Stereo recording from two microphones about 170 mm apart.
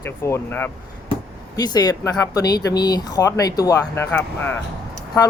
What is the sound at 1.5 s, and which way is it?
Speech, 25° left (ahead or behind).